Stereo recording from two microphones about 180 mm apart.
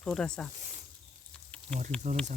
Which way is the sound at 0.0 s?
5° left (ahead or behind).